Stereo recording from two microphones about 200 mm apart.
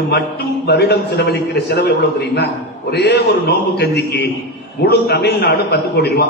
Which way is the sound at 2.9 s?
55° left (ahead or behind).